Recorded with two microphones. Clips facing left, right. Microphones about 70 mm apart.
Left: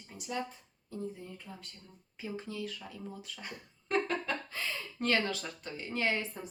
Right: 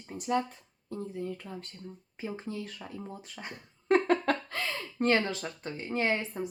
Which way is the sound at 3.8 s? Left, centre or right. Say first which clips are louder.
Right 7 dB; right.